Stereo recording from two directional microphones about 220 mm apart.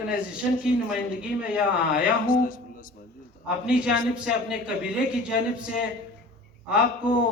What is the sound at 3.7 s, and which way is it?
A man's voice, 5° right (ahead or behind).